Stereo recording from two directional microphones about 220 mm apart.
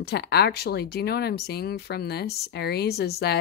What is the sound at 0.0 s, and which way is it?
Speech, 50° left (ahead or behind).